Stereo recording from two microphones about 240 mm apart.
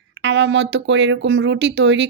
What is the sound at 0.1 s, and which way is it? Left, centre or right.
Speech, right.